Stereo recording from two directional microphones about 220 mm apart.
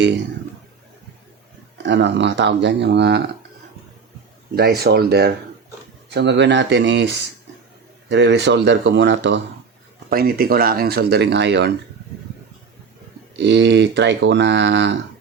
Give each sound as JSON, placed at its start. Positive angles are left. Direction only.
{"t": 1.8, "sound": "speech", "side_deg": -55}
{"t": 4.5, "sound": "speech", "side_deg": -45}
{"t": 10.1, "sound": "speech", "side_deg": -45}
{"t": 13.4, "sound": "speech", "side_deg": -50}